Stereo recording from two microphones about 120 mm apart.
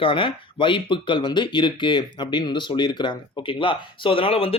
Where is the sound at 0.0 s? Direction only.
45° left (ahead or behind).